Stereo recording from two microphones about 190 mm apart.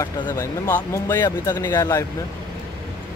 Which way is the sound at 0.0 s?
15° left (ahead or behind).